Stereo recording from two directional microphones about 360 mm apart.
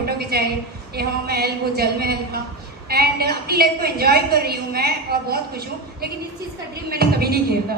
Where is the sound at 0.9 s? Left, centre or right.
Right.